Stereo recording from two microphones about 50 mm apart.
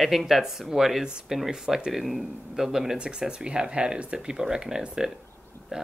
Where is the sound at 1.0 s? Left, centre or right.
Centre.